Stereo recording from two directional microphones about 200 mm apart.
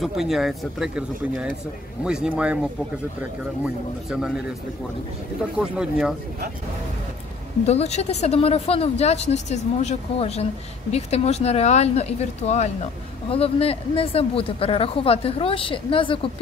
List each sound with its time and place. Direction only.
0.0 s speech: centre (ahead or behind)
5.6 s speech: 5° right (ahead or behind)
7.6 s speech: 30° left (ahead or behind)